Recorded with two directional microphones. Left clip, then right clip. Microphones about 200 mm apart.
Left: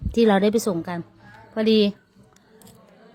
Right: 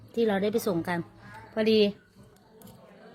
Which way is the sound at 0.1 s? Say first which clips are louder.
Left 8 dB; 35° left (ahead or behind).